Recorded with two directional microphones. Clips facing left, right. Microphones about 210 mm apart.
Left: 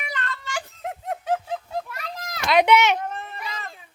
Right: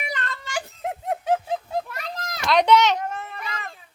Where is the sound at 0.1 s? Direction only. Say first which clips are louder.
Even; 15° right (ahead or behind).